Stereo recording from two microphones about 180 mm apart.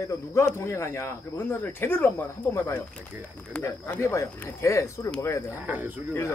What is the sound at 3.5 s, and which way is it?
Speech, 10° left (ahead or behind).